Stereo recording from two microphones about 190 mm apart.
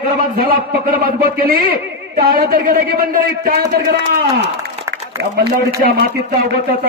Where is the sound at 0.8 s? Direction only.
50° right (ahead or behind).